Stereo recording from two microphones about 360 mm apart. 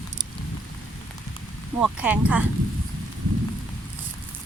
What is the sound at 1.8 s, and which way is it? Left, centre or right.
Speech, centre.